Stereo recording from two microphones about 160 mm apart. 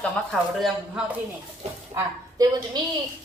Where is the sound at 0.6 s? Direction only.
5° right (ahead or behind).